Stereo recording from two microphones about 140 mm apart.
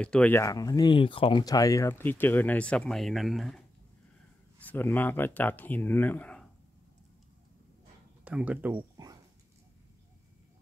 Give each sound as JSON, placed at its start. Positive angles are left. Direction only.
{"t": 0.0, "sound": "speech", "side_deg": 10}
{"t": 0.4, "sound": "speech", "side_deg": 25}
{"t": 1.4, "sound": "speech", "side_deg": 25}
{"t": 4.6, "sound": "speech", "side_deg": 15}
{"t": 8.2, "sound": "speech", "side_deg": -10}
{"t": 8.9, "sound": "a sound", "side_deg": -25}